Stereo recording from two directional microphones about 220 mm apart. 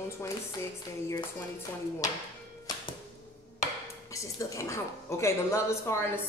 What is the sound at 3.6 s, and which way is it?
Speech, 15° left (ahead or behind).